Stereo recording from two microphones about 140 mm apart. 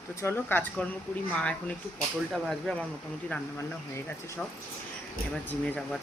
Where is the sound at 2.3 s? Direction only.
5° left (ahead or behind).